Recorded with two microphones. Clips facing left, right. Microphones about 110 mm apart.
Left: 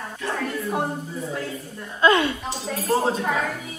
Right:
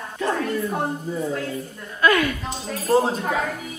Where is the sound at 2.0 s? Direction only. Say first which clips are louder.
Left 1 dB; 25° left (ahead or behind).